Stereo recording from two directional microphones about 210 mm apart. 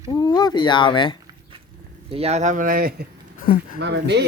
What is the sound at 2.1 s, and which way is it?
Speech, 30° right (ahead or behind).